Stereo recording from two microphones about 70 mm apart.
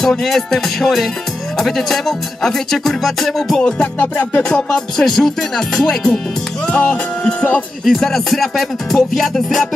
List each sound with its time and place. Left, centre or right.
0.0 s music: centre
3.6 s music: centre
6.7 s music: centre
7.8 s music: centre